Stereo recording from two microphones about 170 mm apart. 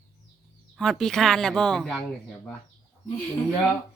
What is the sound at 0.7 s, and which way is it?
Speech, centre (ahead or behind).